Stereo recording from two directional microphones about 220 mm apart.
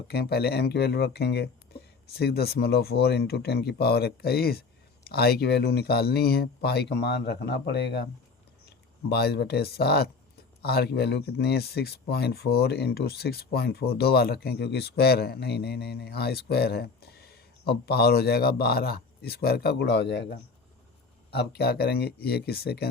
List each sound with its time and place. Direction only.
0.1 s speech: 45° left (ahead or behind)
9.0 s speech: 45° left (ahead or behind)